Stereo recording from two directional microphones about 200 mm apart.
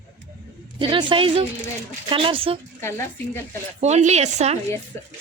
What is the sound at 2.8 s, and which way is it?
Speech, 15° left (ahead or behind).